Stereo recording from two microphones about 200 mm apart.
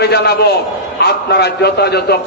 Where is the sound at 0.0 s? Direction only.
55° left (ahead or behind).